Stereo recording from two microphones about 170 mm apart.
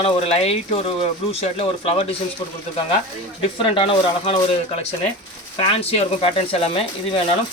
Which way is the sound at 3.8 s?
35° left (ahead or behind).